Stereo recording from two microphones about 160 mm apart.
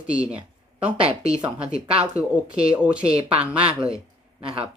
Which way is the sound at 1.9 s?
40° right (ahead or behind).